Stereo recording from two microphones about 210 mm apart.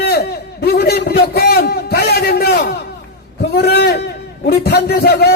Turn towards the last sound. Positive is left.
turn(degrees=50)  # may be behind; listen again after turning